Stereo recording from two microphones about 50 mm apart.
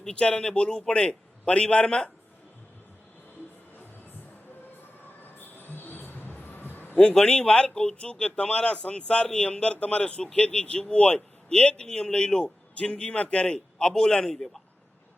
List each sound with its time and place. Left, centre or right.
0.0 s speech: centre
5.2 s a sound: left
6.4 s music: left
6.9 s a man's voice: left